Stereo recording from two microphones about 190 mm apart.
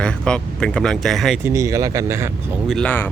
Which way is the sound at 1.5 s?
15° right (ahead or behind).